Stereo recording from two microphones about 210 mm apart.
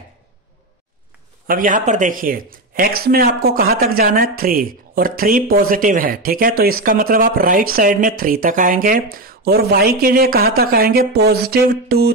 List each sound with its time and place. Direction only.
1.5 s speech: 40° right (ahead or behind)